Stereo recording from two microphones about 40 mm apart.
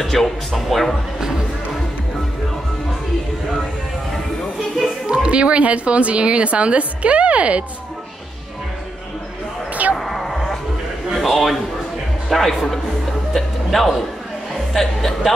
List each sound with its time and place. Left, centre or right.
0.0 s speech: centre
5.0 s a woman's voice: right
9.9 s a sound: centre
11.1 s speech: centre